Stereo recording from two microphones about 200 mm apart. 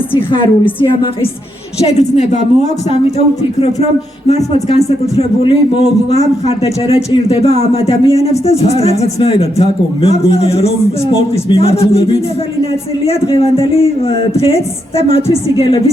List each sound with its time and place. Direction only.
0.1 s speech: 25° left (ahead or behind)